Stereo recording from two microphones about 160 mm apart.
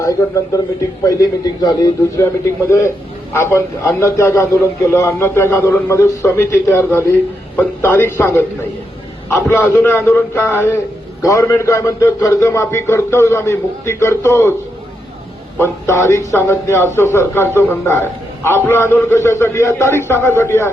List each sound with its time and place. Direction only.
0.0 s a man's voice: 20° left (ahead or behind)
15.5 s a man's voice: 15° left (ahead or behind)